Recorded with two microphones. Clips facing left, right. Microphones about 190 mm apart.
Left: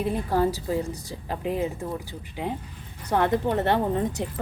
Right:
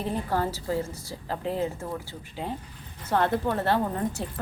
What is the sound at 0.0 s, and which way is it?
Speech, 10° left (ahead or behind).